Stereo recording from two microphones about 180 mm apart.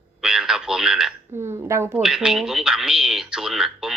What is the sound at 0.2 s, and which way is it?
Radio, 5° right (ahead or behind).